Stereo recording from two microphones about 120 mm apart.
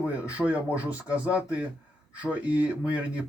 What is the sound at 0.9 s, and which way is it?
Speech, 10° right (ahead or behind).